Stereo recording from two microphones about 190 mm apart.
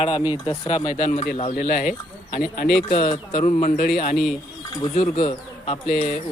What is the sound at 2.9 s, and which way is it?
Speech, 35° left (ahead or behind).